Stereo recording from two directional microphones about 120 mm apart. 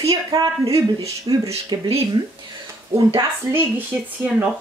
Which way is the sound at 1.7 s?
40° right (ahead or behind).